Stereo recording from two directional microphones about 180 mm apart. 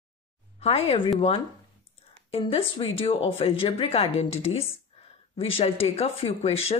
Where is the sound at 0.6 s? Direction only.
35° left (ahead or behind).